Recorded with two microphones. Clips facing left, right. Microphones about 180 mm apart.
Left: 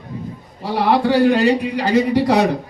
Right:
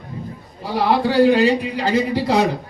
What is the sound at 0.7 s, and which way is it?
A man's voice, 65° left (ahead or behind).